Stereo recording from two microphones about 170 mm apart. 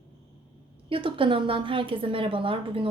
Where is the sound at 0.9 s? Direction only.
30° right (ahead or behind).